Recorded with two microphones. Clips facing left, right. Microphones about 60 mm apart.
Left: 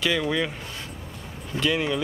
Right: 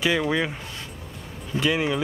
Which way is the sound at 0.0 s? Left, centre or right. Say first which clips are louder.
Right 2 dB; centre.